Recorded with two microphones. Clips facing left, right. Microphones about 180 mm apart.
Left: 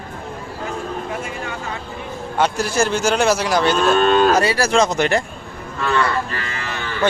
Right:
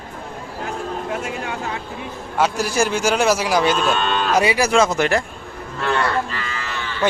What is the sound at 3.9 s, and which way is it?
Cattle, 45° left (ahead or behind).